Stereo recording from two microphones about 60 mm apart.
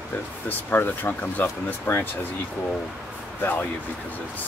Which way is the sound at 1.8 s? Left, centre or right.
Left.